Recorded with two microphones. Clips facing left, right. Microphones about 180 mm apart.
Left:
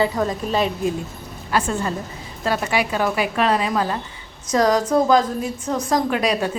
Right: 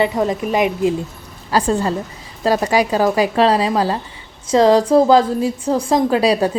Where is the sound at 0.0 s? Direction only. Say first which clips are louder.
Right 3 dB; 20° right (ahead or behind).